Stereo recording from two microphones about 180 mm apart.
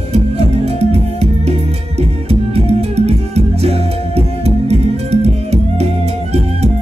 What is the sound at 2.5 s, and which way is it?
Music, 35° right (ahead or behind).